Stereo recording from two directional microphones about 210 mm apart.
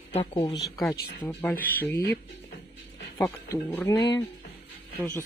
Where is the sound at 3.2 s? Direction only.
10° left (ahead or behind).